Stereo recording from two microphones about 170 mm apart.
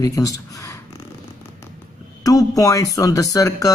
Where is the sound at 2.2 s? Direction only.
20° left (ahead or behind).